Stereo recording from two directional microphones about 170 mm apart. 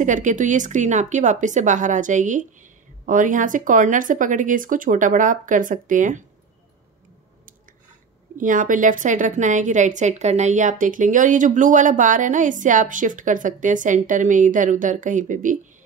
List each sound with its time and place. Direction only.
0.0 s a woman's voice: 45° right (ahead or behind)
8.4 s a woman's voice: 50° right (ahead or behind)